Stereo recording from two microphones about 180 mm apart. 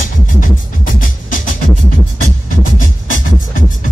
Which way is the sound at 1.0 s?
50° left (ahead or behind).